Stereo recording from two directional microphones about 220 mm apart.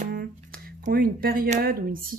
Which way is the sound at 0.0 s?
45° right (ahead or behind).